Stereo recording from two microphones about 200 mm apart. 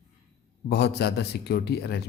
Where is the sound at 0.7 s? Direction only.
55° left (ahead or behind).